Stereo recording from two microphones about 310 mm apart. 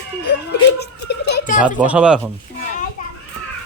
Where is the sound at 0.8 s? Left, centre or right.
Left.